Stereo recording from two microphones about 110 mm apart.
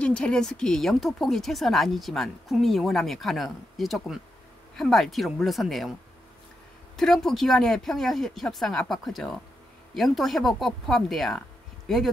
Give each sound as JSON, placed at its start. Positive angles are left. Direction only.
{"t": 0.0, "sound": "speech", "side_deg": 10}
{"t": 7.0, "sound": "speech", "side_deg": 5}